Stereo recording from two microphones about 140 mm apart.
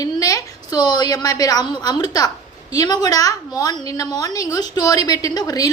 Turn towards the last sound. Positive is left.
turn(degrees=25)  # may be behind; listen again after turning